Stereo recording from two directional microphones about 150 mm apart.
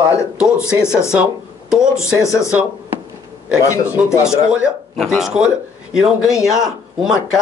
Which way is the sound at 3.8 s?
10° right (ahead or behind).